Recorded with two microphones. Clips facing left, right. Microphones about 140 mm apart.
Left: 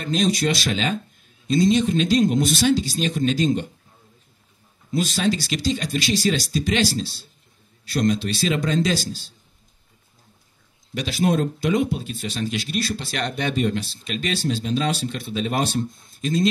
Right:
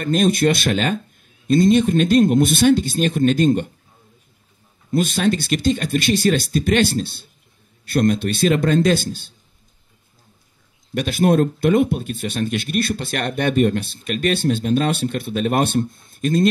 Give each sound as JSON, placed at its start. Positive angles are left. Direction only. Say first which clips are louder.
{"t": 0.0, "sound": "speech", "louder": "right 5 dB", "side_deg": -55}
{"t": 4.9, "sound": "speech", "louder": "right 4 dB", "side_deg": -55}
{"t": 11.0, "sound": "speech", "louder": "right 5 dB", "side_deg": -55}